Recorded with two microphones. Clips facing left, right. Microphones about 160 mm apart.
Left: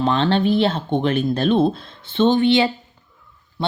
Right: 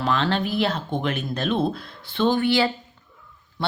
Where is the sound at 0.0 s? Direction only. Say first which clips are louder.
Left 5 dB; 30° left (ahead or behind).